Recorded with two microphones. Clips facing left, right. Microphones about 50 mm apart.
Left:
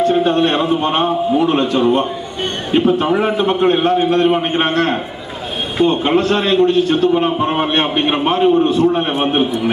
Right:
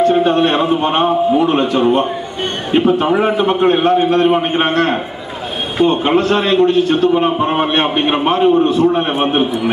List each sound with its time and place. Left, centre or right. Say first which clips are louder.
0.1 s a man's voice: right 1 dB; centre